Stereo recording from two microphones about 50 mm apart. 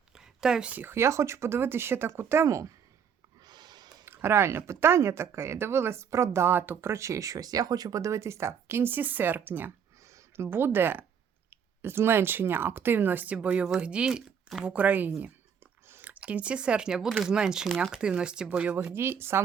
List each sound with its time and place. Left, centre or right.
0.2 s a sound: centre
0.9 s speech: right
4.0 s speech: right
6.5 s speech: right
6.9 s speech: right
8.0 s speech: right
8.9 s speech: right
10.3 s speech: right
13.3 s speech: right
14.8 s speech: right
18.9 s speech: right